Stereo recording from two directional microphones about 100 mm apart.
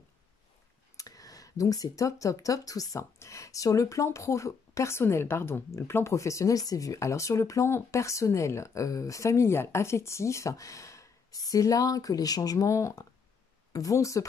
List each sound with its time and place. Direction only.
0.9 s speech: 35° left (ahead or behind)